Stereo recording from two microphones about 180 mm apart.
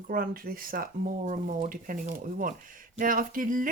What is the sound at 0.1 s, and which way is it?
Speech, 55° right (ahead or behind).